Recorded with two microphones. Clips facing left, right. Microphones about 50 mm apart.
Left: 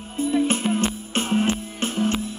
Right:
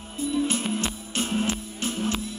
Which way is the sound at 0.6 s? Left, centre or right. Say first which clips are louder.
Left 6 dB; centre.